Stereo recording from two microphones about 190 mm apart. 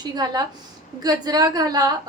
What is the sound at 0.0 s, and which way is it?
A woman's voice, 20° right (ahead or behind).